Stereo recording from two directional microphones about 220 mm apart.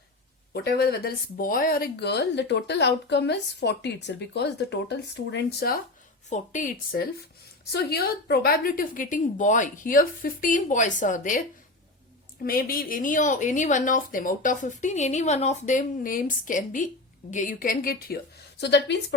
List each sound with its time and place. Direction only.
0.5 s speech: 45° left (ahead or behind)
6.3 s speech: 35° left (ahead or behind)
12.5 s speech: 40° left (ahead or behind)
18.6 s speech: 50° left (ahead or behind)